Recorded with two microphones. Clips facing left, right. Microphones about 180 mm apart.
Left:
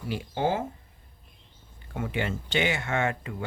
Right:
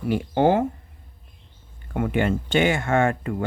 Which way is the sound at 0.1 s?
60° right (ahead or behind).